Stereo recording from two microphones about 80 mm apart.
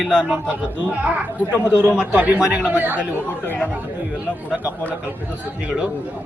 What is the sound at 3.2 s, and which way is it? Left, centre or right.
Speech, left.